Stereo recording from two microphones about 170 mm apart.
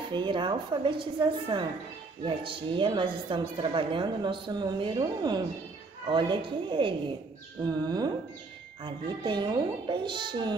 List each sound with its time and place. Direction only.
0.1 s a woman's voice: 30° right (ahead or behind)